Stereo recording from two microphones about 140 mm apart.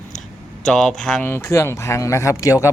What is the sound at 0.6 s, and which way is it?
Speech, 5° left (ahead or behind).